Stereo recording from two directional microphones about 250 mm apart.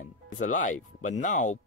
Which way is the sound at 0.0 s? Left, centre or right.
Left.